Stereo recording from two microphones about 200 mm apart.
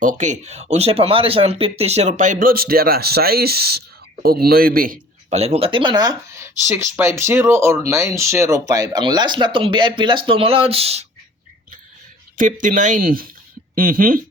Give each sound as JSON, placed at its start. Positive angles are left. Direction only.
{"t": 0.0, "sound": "a man's voice", "side_deg": -40}
{"t": 5.3, "sound": "speech", "side_deg": -30}
{"t": 12.4, "sound": "a man's voice", "side_deg": -40}